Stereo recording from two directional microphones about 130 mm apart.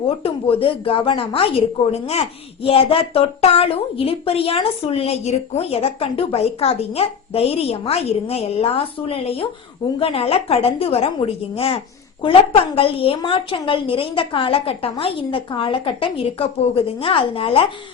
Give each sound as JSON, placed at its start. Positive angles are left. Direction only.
{"t": 0.2, "sound": "a woman's voice", "side_deg": 45}